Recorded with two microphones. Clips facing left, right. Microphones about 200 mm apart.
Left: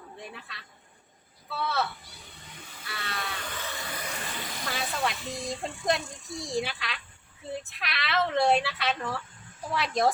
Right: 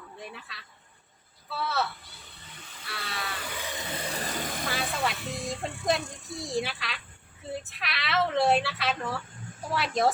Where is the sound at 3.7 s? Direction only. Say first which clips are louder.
Right 3 dB; 25° right (ahead or behind); by 4.6 s 45° right (ahead or behind).